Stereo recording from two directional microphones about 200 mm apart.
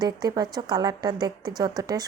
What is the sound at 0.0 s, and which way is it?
A woman's voice, 20° right (ahead or behind).